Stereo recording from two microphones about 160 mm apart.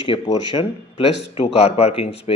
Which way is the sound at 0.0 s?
30° left (ahead or behind).